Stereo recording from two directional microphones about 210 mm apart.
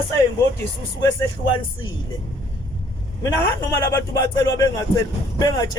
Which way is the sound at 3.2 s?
10° left (ahead or behind).